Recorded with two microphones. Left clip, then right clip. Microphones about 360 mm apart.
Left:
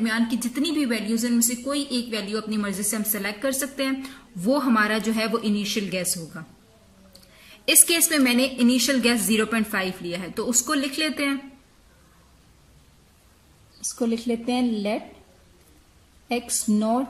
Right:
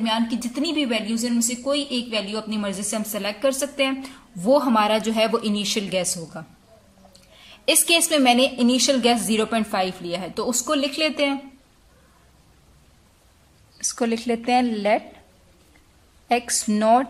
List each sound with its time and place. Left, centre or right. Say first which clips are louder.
0.0 s a woman's voice: right 2 dB; centre
7.6 s a woman's voice: right 2 dB; centre
13.7 s a woman's voice: right 3 dB; right
16.3 s a woman's voice: right 5 dB; right